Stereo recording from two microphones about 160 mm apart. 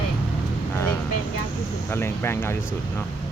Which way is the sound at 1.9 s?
15° left (ahead or behind).